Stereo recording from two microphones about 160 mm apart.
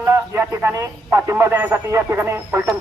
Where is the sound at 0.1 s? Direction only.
15° right (ahead or behind).